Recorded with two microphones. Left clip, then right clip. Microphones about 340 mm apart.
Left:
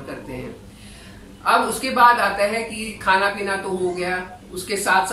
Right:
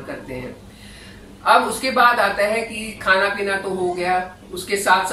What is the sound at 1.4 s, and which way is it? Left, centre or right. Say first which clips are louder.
A woman's voice: right 3 dB; centre.